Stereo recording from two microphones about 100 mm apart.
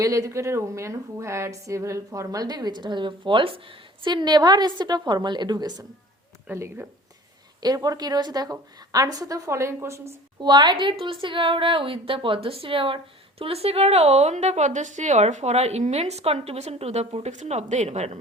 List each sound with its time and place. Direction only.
0.0 s a woman's voice: 35° right (ahead or behind)
6.5 s speech: 25° right (ahead or behind)
7.6 s a woman's voice: 40° right (ahead or behind)
10.4 s a woman's voice: 45° right (ahead or behind)
13.4 s a woman's voice: 80° right